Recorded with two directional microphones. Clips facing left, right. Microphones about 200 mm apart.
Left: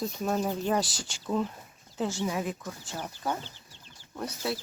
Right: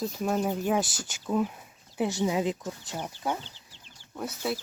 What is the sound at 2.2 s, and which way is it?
Speech, 20° right (ahead or behind).